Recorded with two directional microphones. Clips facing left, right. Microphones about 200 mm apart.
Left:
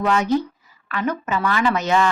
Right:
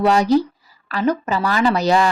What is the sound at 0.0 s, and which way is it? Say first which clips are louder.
Speech: right 4 dB; 35° right (ahead or behind).